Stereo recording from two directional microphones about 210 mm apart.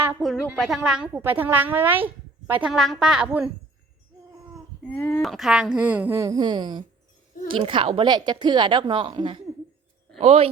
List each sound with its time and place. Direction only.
0.0 s a sound: 10° right (ahead or behind)
0.5 s a woman's voice: centre (ahead or behind)
4.9 s a woman's voice: 10° left (ahead or behind); by 10.5 s 30° right (ahead or behind)